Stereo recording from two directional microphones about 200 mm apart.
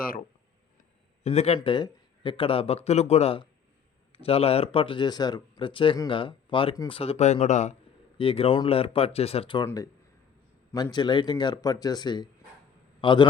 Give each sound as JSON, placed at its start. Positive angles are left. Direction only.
{"t": 0.8, "sound": "speech", "side_deg": 35}
{"t": 9.6, "sound": "a man's voice", "side_deg": 15}